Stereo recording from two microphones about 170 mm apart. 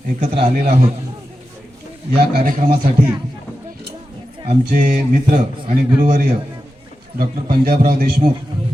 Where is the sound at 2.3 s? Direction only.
50° right (ahead or behind).